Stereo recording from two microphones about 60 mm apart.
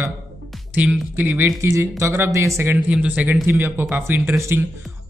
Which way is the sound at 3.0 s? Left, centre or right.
Right.